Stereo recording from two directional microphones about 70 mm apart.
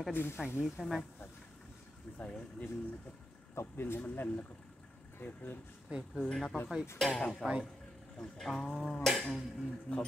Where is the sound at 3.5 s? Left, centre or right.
Left.